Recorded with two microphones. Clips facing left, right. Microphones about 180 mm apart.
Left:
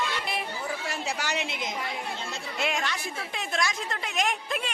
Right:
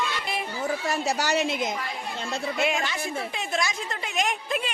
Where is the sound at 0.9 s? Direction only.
40° right (ahead or behind).